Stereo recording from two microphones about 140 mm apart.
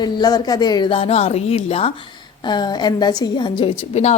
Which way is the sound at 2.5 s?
30° left (ahead or behind).